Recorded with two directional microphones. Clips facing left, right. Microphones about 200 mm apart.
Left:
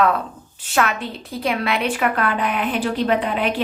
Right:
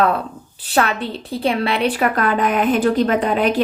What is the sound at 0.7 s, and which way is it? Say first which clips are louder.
A woman's voice: right 2 dB; 30° right (ahead or behind).